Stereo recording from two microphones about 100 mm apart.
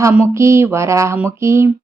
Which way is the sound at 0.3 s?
25° right (ahead or behind).